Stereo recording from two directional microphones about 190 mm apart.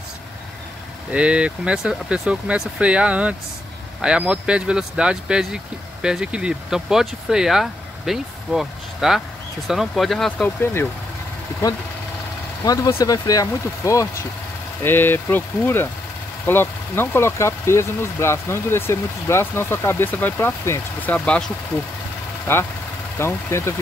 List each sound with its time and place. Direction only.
1.1 s speech: 5° right (ahead or behind); by 10.9 s 10° left (ahead or behind)
12.6 s speech: 20° left (ahead or behind)
23.1 s speech: 15° left (ahead or behind)